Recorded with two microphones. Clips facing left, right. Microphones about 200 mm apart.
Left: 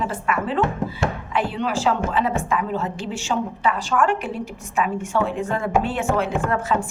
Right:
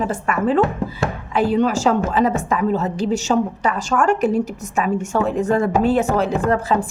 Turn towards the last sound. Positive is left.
turn(degrees=-35)  # may be behind; listen again after turning